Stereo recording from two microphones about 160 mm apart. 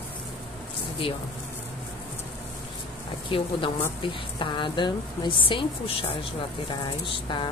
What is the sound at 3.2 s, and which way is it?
A woman's voice, 30° left (ahead or behind).